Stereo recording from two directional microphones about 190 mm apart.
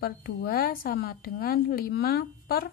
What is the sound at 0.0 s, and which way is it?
A woman's voice, 55° left (ahead or behind).